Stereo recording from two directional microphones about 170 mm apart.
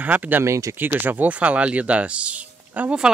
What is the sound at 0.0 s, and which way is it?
Speech, 10° right (ahead or behind).